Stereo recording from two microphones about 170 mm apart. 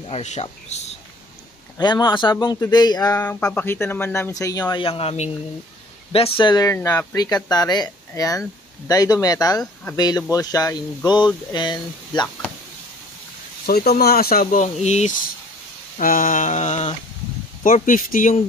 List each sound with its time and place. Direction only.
0.0 s speech: 40° left (ahead or behind)
1.8 s speech: 25° left (ahead or behind)
3.2 s speech: 10° left (ahead or behind); by 6.7 s 25° left (ahead or behind)
6.7 s speech: 15° left (ahead or behind)
13.7 s speech: 65° left (ahead or behind); by 15.1 s 40° left (ahead or behind)
16.0 s a sound: 55° left (ahead or behind)